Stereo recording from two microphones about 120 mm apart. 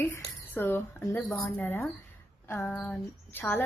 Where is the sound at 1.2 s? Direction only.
Centre (ahead or behind).